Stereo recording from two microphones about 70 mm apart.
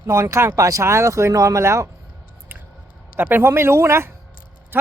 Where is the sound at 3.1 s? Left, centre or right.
Right.